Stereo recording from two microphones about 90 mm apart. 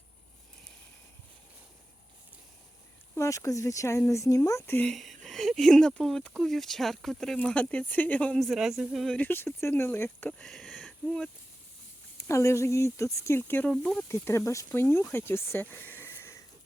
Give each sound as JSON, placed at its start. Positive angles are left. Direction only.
{"t": 3.2, "sound": "speech", "side_deg": 35}
{"t": 4.9, "sound": "speech", "side_deg": 0}
{"t": 8.4, "sound": "speech", "side_deg": -5}
{"t": 9.1, "sound": "speech", "side_deg": 20}
{"t": 10.2, "sound": "speech", "side_deg": 15}
{"t": 10.5, "sound": "a sound", "side_deg": 5}
{"t": 12.1, "sound": "speech", "side_deg": 30}